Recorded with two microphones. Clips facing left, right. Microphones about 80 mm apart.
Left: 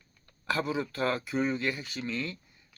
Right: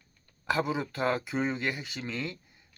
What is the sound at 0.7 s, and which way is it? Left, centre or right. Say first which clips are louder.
Speech: right 1 dB; right.